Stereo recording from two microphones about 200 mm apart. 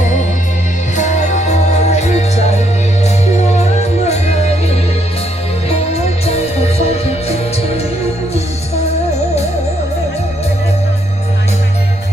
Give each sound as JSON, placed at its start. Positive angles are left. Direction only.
{"t": 0.9, "sound": "music", "side_deg": 35}